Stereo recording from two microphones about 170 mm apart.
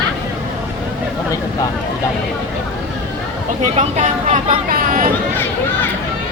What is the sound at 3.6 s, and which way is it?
Speech, 45° right (ahead or behind).